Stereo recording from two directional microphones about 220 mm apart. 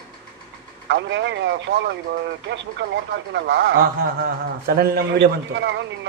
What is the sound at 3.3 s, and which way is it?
A man's voice, 50° right (ahead or behind).